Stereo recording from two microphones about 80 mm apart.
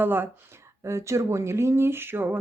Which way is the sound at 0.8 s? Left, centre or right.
Right.